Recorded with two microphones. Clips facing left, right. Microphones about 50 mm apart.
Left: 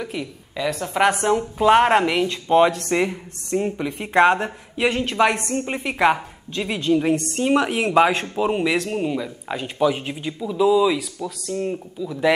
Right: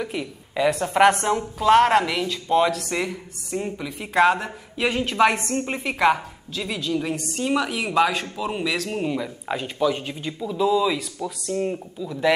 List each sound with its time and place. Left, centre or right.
0.0 s a woman's voice: centre
1.6 s a woman's voice: centre
4.8 s speech: centre
5.7 s a woman's voice: centre
7.2 s speech: centre
7.4 s a woman's voice: centre
8.8 s speech: centre
9.8 s a woman's voice: centre
11.2 s speech: centre